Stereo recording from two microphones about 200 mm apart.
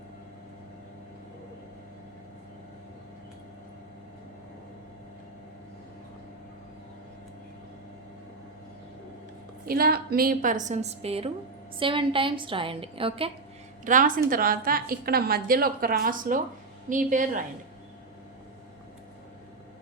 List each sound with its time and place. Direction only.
9.6 s a woman's voice: 50° right (ahead or behind); by 13.3 s 25° right (ahead or behind)
13.8 s a woman's voice: 40° right (ahead or behind)